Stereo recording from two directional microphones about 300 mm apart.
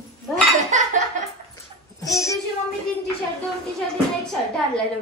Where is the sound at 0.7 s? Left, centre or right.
Right.